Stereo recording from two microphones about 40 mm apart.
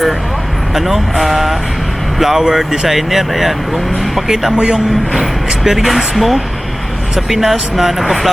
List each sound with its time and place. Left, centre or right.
0.7 s speech: centre
4.5 s speech: right
5.1 s speech: centre